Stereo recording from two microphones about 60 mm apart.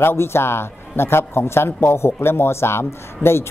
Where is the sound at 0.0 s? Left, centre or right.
Left.